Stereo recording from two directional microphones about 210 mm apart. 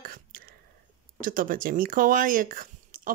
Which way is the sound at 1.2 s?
40° right (ahead or behind).